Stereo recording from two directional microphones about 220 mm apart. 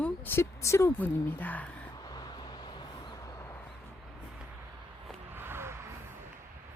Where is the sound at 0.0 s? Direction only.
10° left (ahead or behind).